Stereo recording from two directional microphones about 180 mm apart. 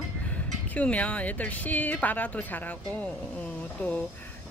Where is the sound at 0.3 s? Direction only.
10° left (ahead or behind).